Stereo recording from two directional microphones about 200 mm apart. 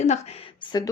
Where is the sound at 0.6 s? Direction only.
20° left (ahead or behind).